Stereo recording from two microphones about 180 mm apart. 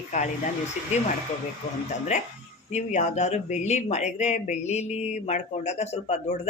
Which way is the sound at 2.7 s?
40° left (ahead or behind).